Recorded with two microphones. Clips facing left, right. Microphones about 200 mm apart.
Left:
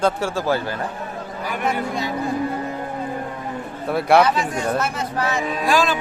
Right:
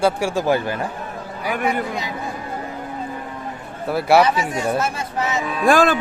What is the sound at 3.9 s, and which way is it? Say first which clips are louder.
Speech: even; 5° right (ahead or behind).